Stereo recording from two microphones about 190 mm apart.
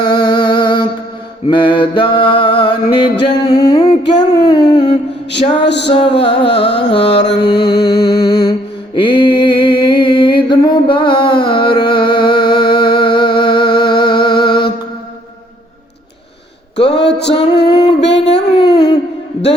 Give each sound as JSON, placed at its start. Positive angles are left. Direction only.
{"t": 0.0, "sound": "music", "side_deg": 20}
{"t": 1.5, "sound": "mantra", "side_deg": 25}
{"t": 4.1, "sound": "a sound", "side_deg": 25}
{"t": 4.7, "sound": "music", "side_deg": 25}
{"t": 5.3, "sound": "music", "side_deg": 65}
{"t": 5.9, "sound": "music", "side_deg": 30}
{"t": 6.2, "sound": "music", "side_deg": 65}
{"t": 8.2, "sound": "mantra", "side_deg": 20}
{"t": 9.0, "sound": "music", "side_deg": 25}
{"t": 16.7, "sound": "a sound", "side_deg": 65}
{"t": 17.3, "sound": "music", "side_deg": 30}
{"t": 18.7, "sound": "a sound", "side_deg": 30}